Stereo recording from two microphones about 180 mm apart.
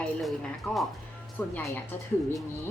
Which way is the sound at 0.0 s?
Centre (ahead or behind).